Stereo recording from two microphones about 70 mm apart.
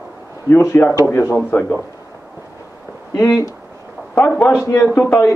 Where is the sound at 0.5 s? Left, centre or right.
Left.